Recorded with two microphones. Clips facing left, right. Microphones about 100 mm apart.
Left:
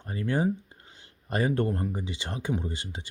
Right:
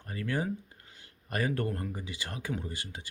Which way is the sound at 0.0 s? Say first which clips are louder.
Left 6 dB; 25° left (ahead or behind).